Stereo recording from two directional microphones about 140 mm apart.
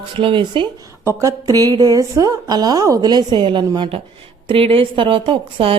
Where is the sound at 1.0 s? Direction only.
20° right (ahead or behind); by 5.7 s 40° right (ahead or behind).